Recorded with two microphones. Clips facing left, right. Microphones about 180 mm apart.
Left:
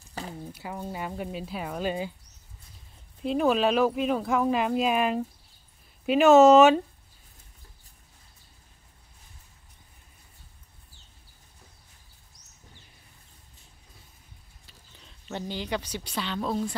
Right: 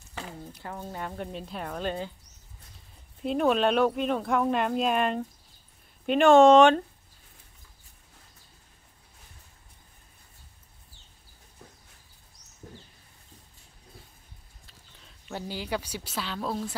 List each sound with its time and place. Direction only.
0.2 s a sound: 40° left (ahead or behind)
0.5 s speech: 10° left (ahead or behind)
3.2 s speech: centre (ahead or behind)
15.2 s speech: 5° right (ahead or behind)